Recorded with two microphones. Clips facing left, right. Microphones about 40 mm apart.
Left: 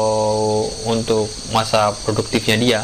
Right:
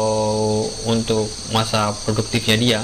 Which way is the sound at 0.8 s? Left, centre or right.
Centre.